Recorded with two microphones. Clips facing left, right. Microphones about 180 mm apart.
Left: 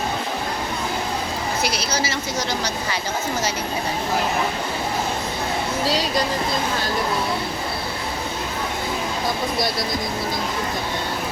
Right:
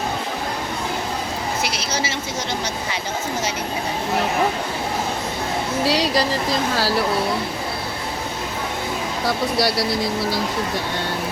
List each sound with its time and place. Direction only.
5.8 s speech: 70° right (ahead or behind)
9.2 s speech: 70° right (ahead or behind)